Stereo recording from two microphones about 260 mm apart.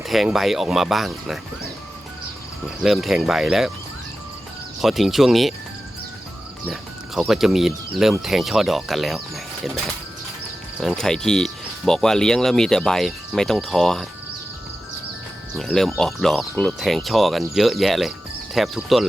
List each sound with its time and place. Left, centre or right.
0.0 s speech: centre
2.8 s speech: centre
4.8 s speech: centre
6.7 s speech: centre
15.5 s speech: centre